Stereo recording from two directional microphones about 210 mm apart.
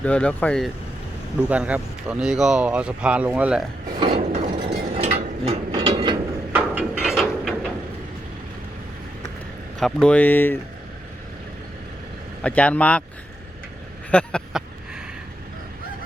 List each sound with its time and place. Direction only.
0.0 s speech: 5° left (ahead or behind)
1.4 s speech: 5° right (ahead or behind)
4.0 s ratchet: 25° right (ahead or behind)
4.9 s gears: 30° right (ahead or behind)
6.5 s a sound: 5° right (ahead or behind)
9.7 s speech: 5° left (ahead or behind)
12.4 s speech: 5° left (ahead or behind)
14.1 s a sound: 5° left (ahead or behind)